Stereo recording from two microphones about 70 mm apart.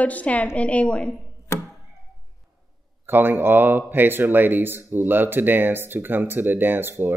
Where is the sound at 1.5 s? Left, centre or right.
Left.